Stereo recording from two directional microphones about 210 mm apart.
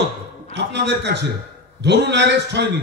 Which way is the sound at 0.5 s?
55° right (ahead or behind).